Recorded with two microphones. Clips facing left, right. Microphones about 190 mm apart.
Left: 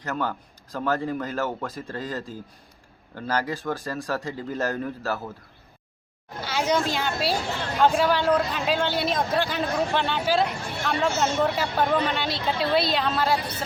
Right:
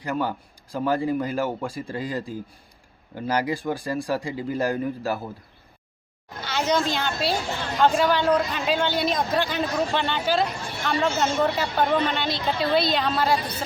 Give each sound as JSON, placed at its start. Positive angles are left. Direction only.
{"t": 0.0, "sound": "a man's voice", "side_deg": -10}
{"t": 6.4, "sound": "a sound", "side_deg": 10}
{"t": 6.9, "sound": "a man's voice", "side_deg": 5}